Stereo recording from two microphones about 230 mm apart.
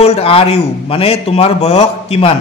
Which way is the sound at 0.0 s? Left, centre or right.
Left.